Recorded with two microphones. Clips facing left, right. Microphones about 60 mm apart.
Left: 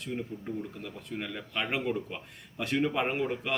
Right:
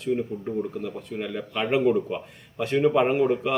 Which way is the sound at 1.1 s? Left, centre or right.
Centre.